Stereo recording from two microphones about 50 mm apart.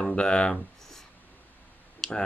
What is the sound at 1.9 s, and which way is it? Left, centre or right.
Clicking, centre.